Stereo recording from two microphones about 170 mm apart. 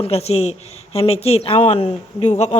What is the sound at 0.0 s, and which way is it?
A woman's voice, 35° left (ahead or behind).